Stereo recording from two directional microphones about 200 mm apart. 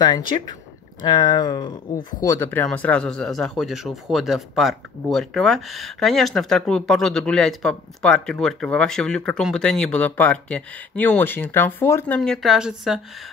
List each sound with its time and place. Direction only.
1.0 s speech: 20° left (ahead or behind)
12.2 s speech: centre (ahead or behind)